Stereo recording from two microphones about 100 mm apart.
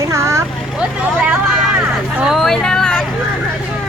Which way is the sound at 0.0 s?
30° right (ahead or behind).